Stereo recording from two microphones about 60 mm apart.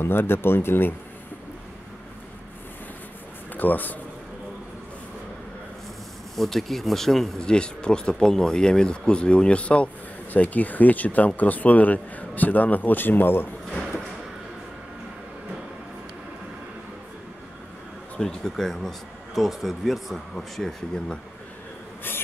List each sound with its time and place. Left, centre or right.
0.0 s speech: left
3.5 s a man's voice: left
6.3 s speech: centre
7.4 s speech: centre; by 13.5 s left
18.2 s speech: centre